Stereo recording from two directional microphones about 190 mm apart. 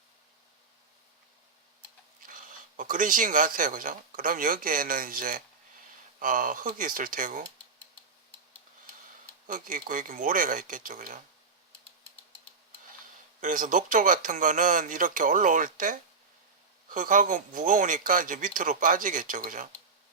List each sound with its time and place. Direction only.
2.2 s speech: 45° right (ahead or behind)
9.5 s speech: 45° right (ahead or behind)
13.4 s speech: 45° right (ahead or behind)